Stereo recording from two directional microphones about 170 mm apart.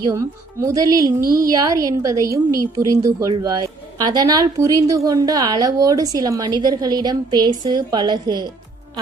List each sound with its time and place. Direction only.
0.0 s speech: 20° right (ahead or behind)
1.2 s a woman's voice: 60° right (ahead or behind)
1.5 s speech: 20° right (ahead or behind)